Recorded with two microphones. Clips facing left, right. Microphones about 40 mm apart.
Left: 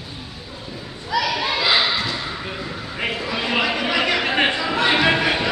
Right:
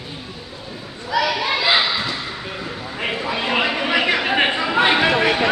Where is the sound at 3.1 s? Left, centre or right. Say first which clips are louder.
Right 2 dB; centre.